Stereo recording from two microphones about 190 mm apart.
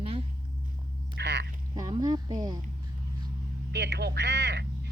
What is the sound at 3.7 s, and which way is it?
Speech, 65° right (ahead or behind).